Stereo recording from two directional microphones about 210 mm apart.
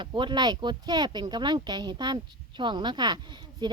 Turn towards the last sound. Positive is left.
turn(degrees=-20)  # may be behind; listen again after turning